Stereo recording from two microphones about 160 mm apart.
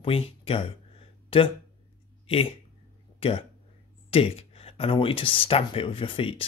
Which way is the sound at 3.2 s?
35° left (ahead or behind).